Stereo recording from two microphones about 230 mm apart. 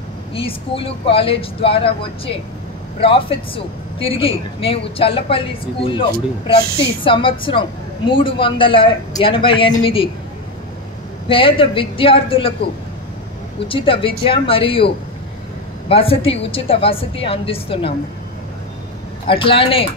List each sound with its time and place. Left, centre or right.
0.3 s speech: left
3.0 s speech: left
11.2 s speech: left
13.7 s speech: left
15.9 s speech: left
19.2 s speech: left